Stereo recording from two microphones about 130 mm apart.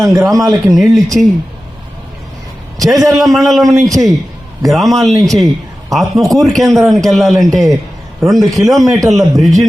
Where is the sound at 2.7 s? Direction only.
25° right (ahead or behind).